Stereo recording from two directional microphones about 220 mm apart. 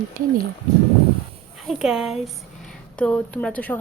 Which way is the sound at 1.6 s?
Centre (ahead or behind).